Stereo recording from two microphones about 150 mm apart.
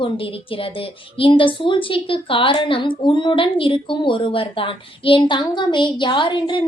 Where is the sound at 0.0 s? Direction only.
35° left (ahead or behind).